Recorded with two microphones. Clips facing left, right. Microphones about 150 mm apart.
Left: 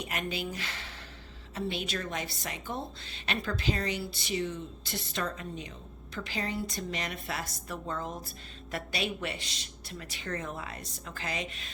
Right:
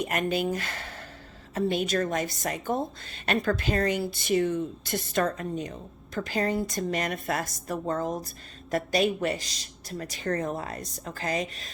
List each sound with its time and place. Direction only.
0.0 s a woman's voice: 50° right (ahead or behind)